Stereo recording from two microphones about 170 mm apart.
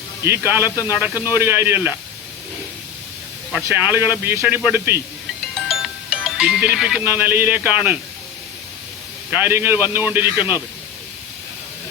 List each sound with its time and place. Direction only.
0.3 s speech: 10° right (ahead or behind)
3.8 s speech: 10° right (ahead or behind)
5.5 s music: centre (ahead or behind)
7.0 s speech: 10° right (ahead or behind)
9.3 s speech: 15° right (ahead or behind)
10.3 s speech: 25° left (ahead or behind)